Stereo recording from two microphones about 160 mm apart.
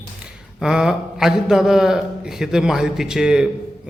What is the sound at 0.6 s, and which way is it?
A man's voice, 5° right (ahead or behind).